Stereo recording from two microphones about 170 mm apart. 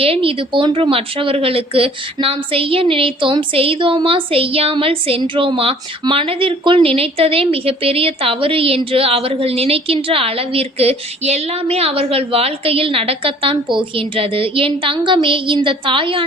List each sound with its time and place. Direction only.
0.0 s speech: 35° right (ahead or behind)